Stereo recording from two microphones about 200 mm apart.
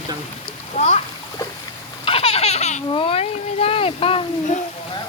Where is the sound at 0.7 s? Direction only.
35° left (ahead or behind).